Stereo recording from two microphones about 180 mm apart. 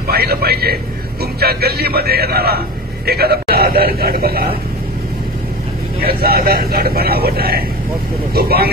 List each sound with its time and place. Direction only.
0.1 s speech: 60° right (ahead or behind)
5.9 s speech: 55° right (ahead or behind)